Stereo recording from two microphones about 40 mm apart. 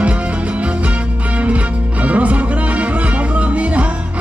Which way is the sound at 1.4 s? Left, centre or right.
Right.